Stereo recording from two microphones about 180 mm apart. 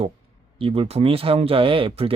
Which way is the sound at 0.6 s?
30° right (ahead or behind).